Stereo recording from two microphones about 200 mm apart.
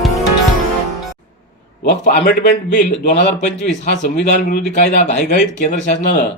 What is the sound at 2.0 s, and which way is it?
Speech, 50° left (ahead or behind).